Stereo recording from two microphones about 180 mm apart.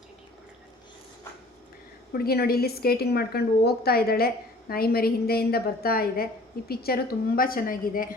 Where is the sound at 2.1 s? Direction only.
60° left (ahead or behind).